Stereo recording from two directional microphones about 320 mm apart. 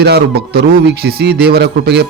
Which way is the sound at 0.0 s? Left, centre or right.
Right.